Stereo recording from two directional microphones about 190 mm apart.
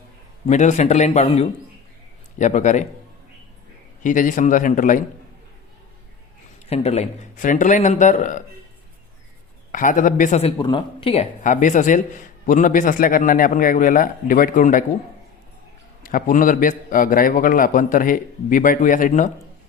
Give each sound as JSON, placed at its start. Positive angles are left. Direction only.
{"t": 0.4, "sound": "a man's voice", "side_deg": 40}
{"t": 4.0, "sound": "speech", "side_deg": 45}
{"t": 6.7, "sound": "a man's voice", "side_deg": 35}
{"t": 9.7, "sound": "speech", "side_deg": 45}
{"t": 10.6, "sound": "speech", "side_deg": 25}
{"t": 16.0, "sound": "speech", "side_deg": 45}